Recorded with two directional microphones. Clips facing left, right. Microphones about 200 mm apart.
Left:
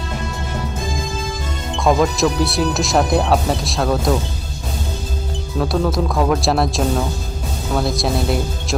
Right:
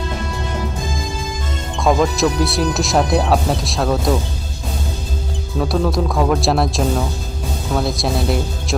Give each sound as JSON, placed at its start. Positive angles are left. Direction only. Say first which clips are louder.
{"t": 1.8, "sound": "speech", "louder": "even", "side_deg": 0}
{"t": 5.5, "sound": "speech", "louder": "even", "side_deg": 0}